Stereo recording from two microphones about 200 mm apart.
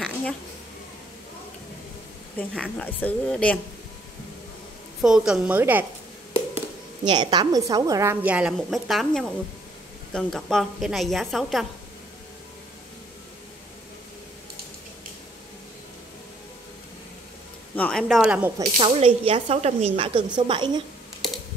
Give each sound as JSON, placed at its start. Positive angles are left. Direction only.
{"t": 0.0, "sound": "a sound", "side_deg": 5}
{"t": 2.3, "sound": "a woman's voice", "side_deg": 5}
{"t": 5.0, "sound": "a woman's voice", "side_deg": -5}
{"t": 7.1, "sound": "a woman's voice", "side_deg": -20}
{"t": 17.7, "sound": "speech", "side_deg": 5}
{"t": 18.0, "sound": "a woman's voice", "side_deg": -5}
{"t": 18.8, "sound": "speech", "side_deg": -30}